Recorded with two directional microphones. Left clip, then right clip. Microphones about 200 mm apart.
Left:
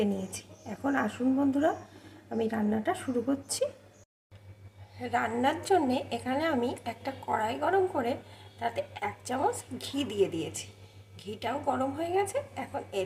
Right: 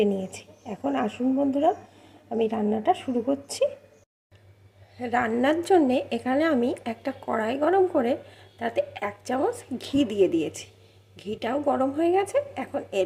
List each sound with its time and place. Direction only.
0.0 s a woman's voice: 20° right (ahead or behind)
4.9 s a woman's voice: 35° right (ahead or behind)